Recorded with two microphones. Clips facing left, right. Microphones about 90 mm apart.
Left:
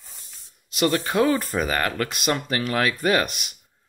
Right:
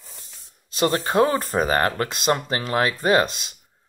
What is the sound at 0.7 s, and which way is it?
Speech, 30° right (ahead or behind).